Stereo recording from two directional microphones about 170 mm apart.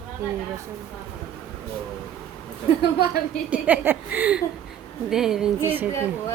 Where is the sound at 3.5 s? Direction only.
10° right (ahead or behind).